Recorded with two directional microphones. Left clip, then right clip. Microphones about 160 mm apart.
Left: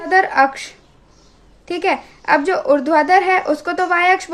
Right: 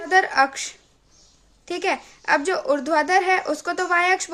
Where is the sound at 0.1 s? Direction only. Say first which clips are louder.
Left 5 dB; 25° right (ahead or behind).